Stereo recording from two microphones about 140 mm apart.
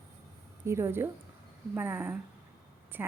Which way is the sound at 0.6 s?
20° right (ahead or behind).